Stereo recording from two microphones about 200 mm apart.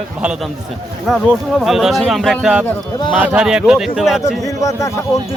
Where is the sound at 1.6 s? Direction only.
Centre (ahead or behind).